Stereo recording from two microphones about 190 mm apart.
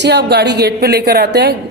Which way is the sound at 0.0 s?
60° right (ahead or behind).